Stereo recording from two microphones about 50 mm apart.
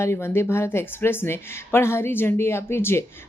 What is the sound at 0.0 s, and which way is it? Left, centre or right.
A woman's voice, left.